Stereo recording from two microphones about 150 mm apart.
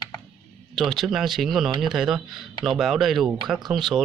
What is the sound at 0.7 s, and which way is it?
Speech, centre (ahead or behind).